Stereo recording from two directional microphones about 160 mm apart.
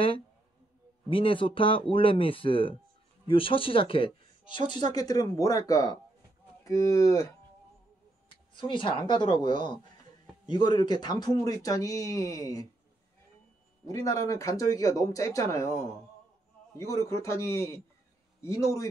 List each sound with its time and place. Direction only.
1.1 s speech: 35° left (ahead or behind)
8.5 s speech: 30° left (ahead or behind)
13.8 s speech: 20° left (ahead or behind)